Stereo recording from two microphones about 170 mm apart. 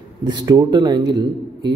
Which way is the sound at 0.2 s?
25° right (ahead or behind).